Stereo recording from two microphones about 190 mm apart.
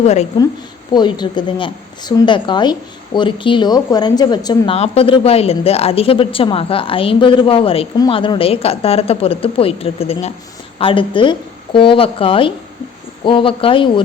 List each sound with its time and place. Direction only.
0.0 s a woman's voice: 35° left (ahead or behind)
0.9 s a woman's voice: 25° left (ahead or behind)